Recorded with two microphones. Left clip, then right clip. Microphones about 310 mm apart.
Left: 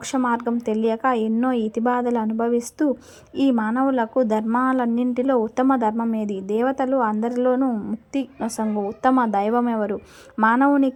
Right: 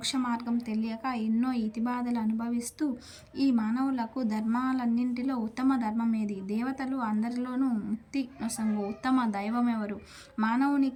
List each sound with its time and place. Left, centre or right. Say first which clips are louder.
0.1 s speech: left 13 dB; left
9.0 s speech: left 11 dB; left